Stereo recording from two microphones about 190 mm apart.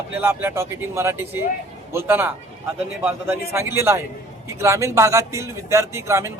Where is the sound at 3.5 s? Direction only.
15° right (ahead or behind).